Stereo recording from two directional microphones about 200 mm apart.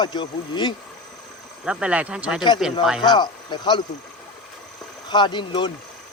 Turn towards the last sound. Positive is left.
turn(degrees=25)  # may be behind; listen again after turning